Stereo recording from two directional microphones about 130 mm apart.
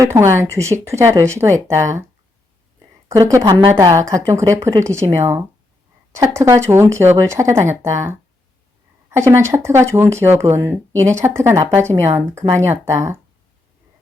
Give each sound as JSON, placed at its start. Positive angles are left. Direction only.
{"t": 0.0, "sound": "speech", "side_deg": -20}
{"t": 3.1, "sound": "speech", "side_deg": -25}